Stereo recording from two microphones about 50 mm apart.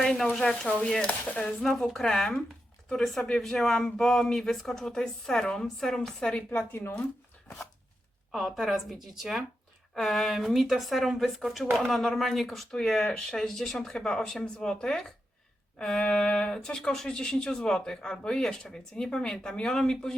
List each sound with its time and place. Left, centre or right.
0.0 s a woman's voice: centre
6.6 s speech: left
8.3 s a woman's voice: centre